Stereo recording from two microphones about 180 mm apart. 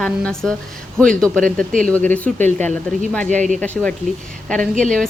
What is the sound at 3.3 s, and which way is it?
Speech, 45° right (ahead or behind).